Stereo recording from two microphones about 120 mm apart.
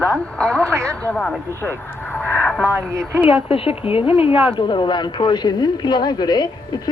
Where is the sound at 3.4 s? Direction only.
50° left (ahead or behind).